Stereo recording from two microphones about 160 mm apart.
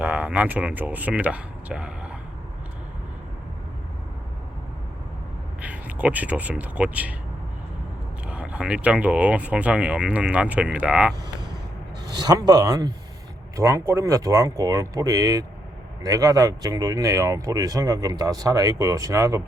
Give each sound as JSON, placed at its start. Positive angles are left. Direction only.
{"t": 0.0, "sound": "speech", "side_deg": -5}
{"t": 5.6, "sound": "speech", "side_deg": -10}
{"t": 8.3, "sound": "speech", "side_deg": -5}
{"t": 12.1, "sound": "speech", "side_deg": -25}